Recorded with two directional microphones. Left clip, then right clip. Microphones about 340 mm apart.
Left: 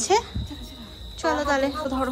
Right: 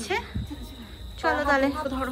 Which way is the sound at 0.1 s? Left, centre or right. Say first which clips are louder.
Left 8 dB; centre.